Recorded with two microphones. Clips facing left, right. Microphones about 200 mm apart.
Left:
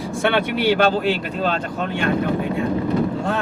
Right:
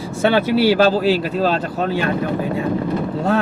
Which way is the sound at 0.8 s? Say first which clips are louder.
Right 3 dB; 35° right (ahead or behind).